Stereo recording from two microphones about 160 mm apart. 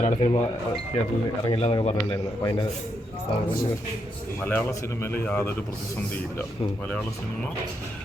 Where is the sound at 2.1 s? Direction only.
20° left (ahead or behind).